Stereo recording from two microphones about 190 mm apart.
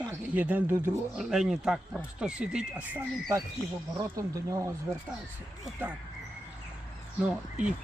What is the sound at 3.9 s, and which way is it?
Speech, 15° right (ahead or behind).